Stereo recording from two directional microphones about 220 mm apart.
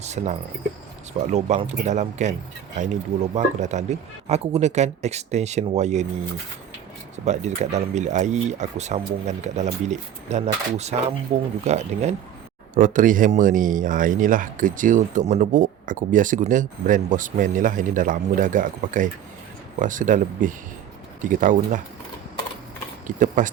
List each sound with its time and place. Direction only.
0.0 s speech: 30° right (ahead or behind)
3.3 s speech: 30° right (ahead or behind)
7.3 s speech: 30° right (ahead or behind)
23.0 s speech: 35° right (ahead or behind)